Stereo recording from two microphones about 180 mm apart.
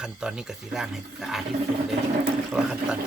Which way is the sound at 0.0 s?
5° right (ahead or behind).